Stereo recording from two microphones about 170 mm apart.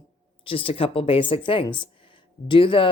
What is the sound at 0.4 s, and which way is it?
Speech, 30° left (ahead or behind).